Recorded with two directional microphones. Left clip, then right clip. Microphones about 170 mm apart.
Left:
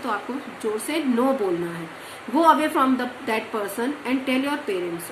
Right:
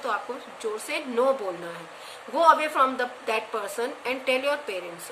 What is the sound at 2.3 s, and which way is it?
A woman's voice, 30° right (ahead or behind).